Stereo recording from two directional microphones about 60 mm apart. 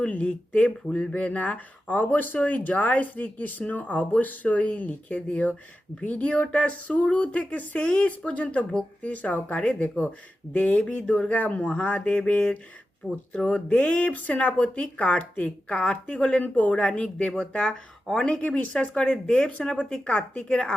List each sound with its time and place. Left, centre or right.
0.0 s speech: left
18.4 s speech: left